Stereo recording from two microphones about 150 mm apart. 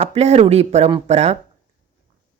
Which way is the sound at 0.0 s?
45° right (ahead or behind).